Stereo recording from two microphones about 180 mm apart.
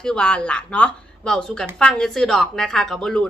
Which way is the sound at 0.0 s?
5° left (ahead or behind).